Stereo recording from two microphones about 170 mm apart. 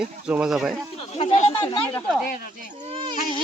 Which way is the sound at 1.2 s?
35° left (ahead or behind).